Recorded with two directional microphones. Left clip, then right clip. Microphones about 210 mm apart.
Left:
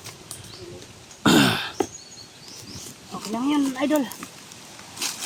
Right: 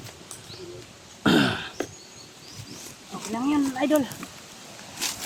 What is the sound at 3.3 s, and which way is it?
Speech, 30° left (ahead or behind).